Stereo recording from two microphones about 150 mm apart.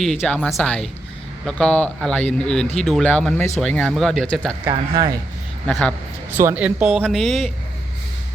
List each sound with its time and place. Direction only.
0.0 s speech: 5° left (ahead or behind)
4.7 s speech: 25° right (ahead or behind)
6.3 s speech: 15° right (ahead or behind)